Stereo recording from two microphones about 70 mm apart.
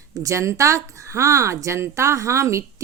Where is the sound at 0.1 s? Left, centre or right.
Right.